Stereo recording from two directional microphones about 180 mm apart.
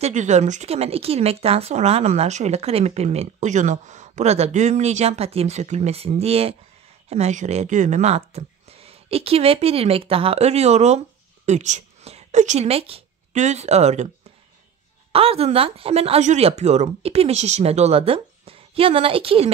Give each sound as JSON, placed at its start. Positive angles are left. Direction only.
{"t": 0.0, "sound": "speech", "side_deg": -40}
{"t": 15.1, "sound": "speech", "side_deg": -35}